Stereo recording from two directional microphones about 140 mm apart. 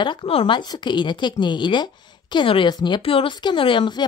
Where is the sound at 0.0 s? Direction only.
35° left (ahead or behind).